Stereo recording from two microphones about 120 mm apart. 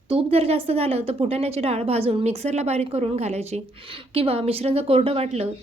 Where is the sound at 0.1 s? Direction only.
55° right (ahead or behind).